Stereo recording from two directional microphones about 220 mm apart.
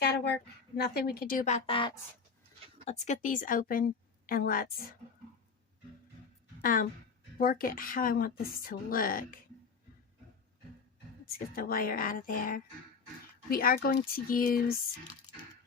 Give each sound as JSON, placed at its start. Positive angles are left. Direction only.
{"t": 0.0, "sound": "a sound", "side_deg": 45}
{"t": 0.8, "sound": "a woman's voice", "side_deg": 45}
{"t": 6.6, "sound": "a woman's voice", "side_deg": 40}
{"t": 11.3, "sound": "a woman's voice", "side_deg": 40}